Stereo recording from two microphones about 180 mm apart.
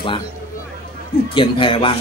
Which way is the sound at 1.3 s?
30° left (ahead or behind).